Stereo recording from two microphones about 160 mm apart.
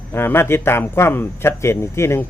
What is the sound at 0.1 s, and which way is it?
A man's voice, 15° left (ahead or behind).